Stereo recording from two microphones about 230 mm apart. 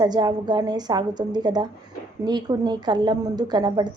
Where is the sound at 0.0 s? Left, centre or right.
Centre.